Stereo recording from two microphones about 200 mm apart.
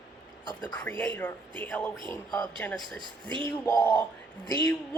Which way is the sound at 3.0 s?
20° right (ahead or behind).